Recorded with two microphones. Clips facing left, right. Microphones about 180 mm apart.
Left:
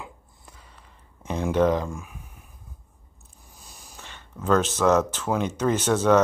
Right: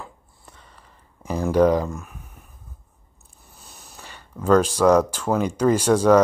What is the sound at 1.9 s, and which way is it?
Speech, 10° left (ahead or behind).